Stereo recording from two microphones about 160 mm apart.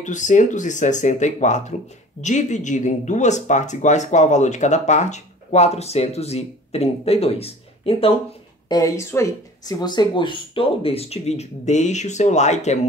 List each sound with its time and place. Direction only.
0.0 s speech: 50° left (ahead or behind)
8.6 s speech: 25° left (ahead or behind); by 12.7 s 45° left (ahead or behind)